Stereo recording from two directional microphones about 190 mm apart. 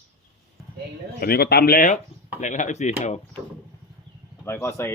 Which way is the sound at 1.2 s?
55° left (ahead or behind).